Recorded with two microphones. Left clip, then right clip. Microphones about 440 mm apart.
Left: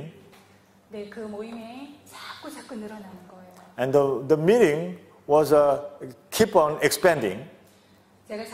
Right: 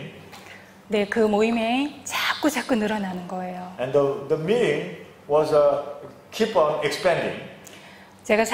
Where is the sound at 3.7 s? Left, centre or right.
Left.